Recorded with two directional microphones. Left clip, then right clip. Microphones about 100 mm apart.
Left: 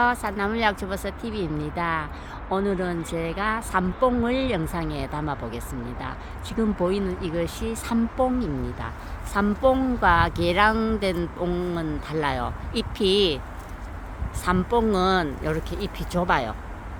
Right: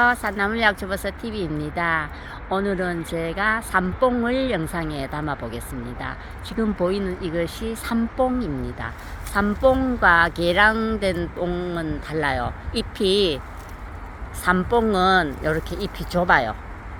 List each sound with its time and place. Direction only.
0.0 s speech: centre (ahead or behind)
11.3 s speech: 20° left (ahead or behind)
12.0 s speech: 5° left (ahead or behind)
14.4 s speech: centre (ahead or behind)
15.7 s speech: 15° right (ahead or behind)